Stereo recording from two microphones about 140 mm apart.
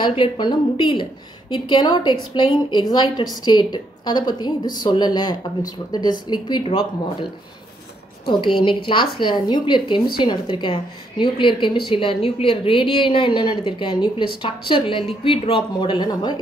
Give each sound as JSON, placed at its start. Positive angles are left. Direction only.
{"t": 0.2, "sound": "a woman's voice", "side_deg": 35}
{"t": 8.3, "sound": "a woman's voice", "side_deg": 35}